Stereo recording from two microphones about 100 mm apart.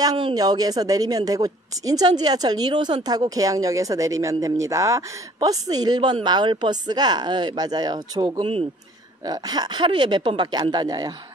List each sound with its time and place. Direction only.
0.3 s a woman's voice: 40° right (ahead or behind)
8.4 s speech: 70° right (ahead or behind)
9.2 s speech: 40° right (ahead or behind)